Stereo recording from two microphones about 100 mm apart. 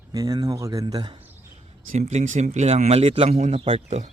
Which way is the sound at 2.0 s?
90° right.